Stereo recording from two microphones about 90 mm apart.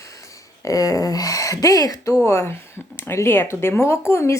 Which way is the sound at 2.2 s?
30° left (ahead or behind).